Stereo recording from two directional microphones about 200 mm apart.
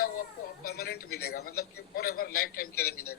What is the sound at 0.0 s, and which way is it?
Speech, 50° left (ahead or behind).